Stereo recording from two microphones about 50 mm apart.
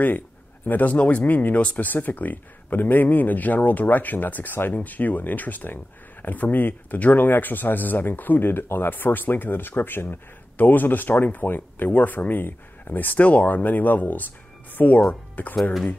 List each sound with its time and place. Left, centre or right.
0.7 s speech: left